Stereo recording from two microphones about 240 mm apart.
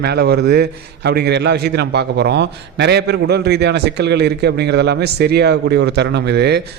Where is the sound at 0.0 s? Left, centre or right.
Right.